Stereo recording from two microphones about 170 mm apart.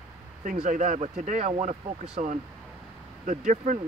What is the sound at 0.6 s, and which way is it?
Speech, 50° right (ahead or behind).